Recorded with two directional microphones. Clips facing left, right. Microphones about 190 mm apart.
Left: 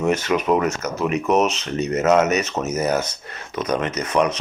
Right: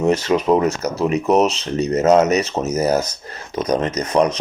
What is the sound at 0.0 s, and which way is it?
Speech, 30° right (ahead or behind).